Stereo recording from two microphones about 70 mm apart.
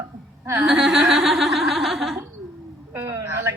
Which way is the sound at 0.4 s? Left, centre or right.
Right.